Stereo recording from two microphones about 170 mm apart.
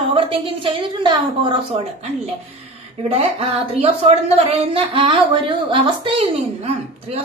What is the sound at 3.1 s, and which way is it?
A woman's voice, 35° right (ahead or behind).